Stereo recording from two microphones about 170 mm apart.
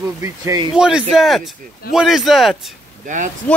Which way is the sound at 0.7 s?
5° right (ahead or behind).